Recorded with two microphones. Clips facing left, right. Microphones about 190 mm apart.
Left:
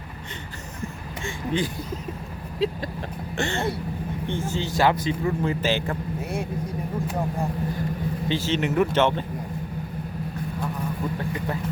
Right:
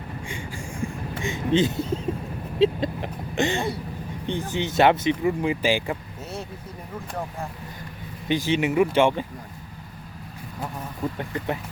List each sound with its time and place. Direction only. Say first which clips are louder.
0.8 s vehicle: right 4 dB; 15° right (ahead or behind)
3.3 s speech: right 2 dB; 15° right (ahead or behind)
8.3 s speech: right 3 dB; 15° right (ahead or behind)